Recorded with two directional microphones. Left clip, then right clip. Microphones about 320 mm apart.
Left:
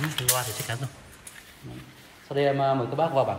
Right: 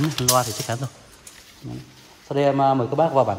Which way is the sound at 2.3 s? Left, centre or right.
Right.